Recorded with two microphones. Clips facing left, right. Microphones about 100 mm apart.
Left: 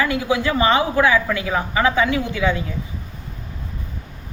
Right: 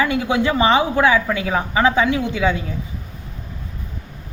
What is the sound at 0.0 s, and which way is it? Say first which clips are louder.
Speech: right 2 dB; 25° right (ahead or behind).